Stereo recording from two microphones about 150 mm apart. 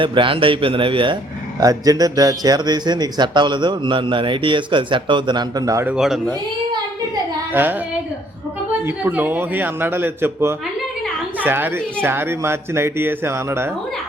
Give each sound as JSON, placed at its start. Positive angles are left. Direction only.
{"t": 0.0, "sound": "a man's voice", "side_deg": -35}
{"t": 1.6, "sound": "speech", "side_deg": -25}
{"t": 5.8, "sound": "a man's voice", "side_deg": -5}
{"t": 7.5, "sound": "speech", "side_deg": -15}
{"t": 9.0, "sound": "a child's voice", "side_deg": -10}